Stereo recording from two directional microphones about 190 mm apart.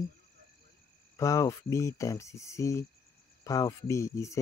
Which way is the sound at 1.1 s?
15° left (ahead or behind).